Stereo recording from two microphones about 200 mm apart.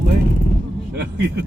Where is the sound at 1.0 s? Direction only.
55° right (ahead or behind).